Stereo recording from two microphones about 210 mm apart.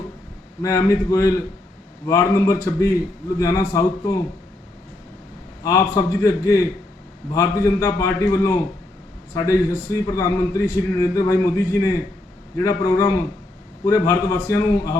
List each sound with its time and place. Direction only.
0.6 s a man's voice: 15° left (ahead or behind)
5.6 s a man's voice: 15° left (ahead or behind)